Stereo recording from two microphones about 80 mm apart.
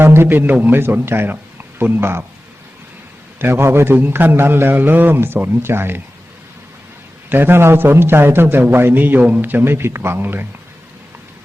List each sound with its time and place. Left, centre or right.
0.0 s a man's voice: right
3.3 s a man's voice: right
7.3 s a man's voice: right